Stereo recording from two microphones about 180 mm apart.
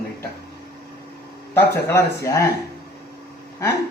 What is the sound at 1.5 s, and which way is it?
Speech, 15° left (ahead or behind).